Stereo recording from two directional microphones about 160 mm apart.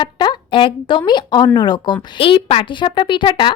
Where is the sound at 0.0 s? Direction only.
30° left (ahead or behind).